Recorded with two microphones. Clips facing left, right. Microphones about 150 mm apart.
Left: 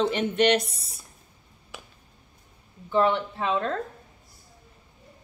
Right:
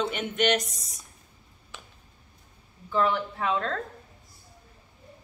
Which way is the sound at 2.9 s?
25° left (ahead or behind).